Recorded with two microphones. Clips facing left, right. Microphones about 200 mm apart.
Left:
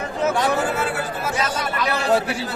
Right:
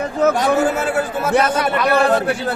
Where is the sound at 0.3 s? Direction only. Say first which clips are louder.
Right 4 dB; 45° right (ahead or behind).